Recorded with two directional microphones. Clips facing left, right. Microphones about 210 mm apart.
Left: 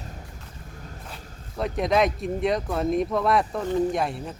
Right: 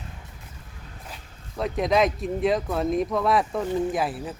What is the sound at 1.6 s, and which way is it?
Speech, centre (ahead or behind).